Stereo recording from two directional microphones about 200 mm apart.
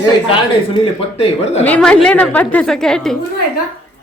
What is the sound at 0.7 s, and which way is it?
Speech, 30° left (ahead or behind).